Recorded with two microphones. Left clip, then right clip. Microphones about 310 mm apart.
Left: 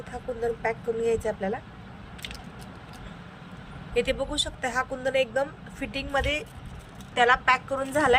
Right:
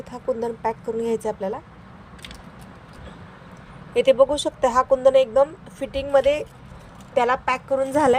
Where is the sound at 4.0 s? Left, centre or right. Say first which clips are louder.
Right 10 dB; centre.